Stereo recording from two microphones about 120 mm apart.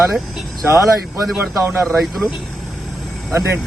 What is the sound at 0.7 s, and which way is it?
Speech, 25° right (ahead or behind).